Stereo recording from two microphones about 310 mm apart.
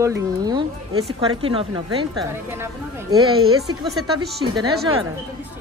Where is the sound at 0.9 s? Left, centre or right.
Right.